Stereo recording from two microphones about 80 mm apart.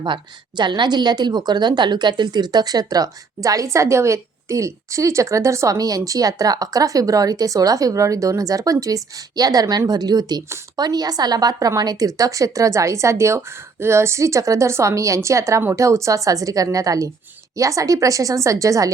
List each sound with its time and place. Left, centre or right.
0.0 s a woman's voice: right